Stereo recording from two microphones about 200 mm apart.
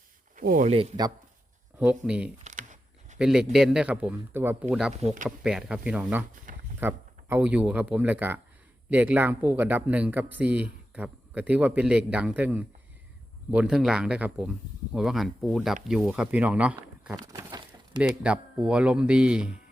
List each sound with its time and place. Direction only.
0.3 s speech: 40° right (ahead or behind)
0.8 s speech: 20° right (ahead or behind)
1.8 s speech: 5° right (ahead or behind)
2.4 s a sound: 40° right (ahead or behind)
3.2 s speech: 5° right (ahead or behind)
5.0 s speech: 40° right (ahead or behind)
5.4 s speech: 5° right (ahead or behind)
17.2 s a sound: 20° right (ahead or behind)
18.1 s speech: 5° right (ahead or behind)